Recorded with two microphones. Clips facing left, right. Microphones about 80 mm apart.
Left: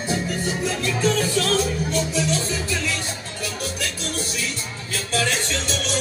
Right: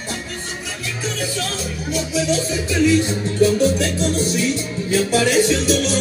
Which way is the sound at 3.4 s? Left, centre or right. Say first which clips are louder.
Right 13 dB; right.